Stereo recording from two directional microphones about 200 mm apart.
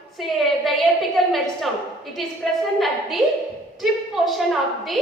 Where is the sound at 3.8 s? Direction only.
Centre (ahead or behind).